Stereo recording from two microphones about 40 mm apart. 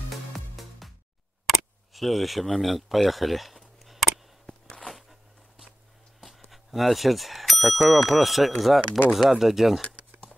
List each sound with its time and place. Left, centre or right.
0.6 s music: centre
1.5 s camera: centre
6.5 s bicycle bell: centre
7.9 s speech: centre
9.8 s a sound: left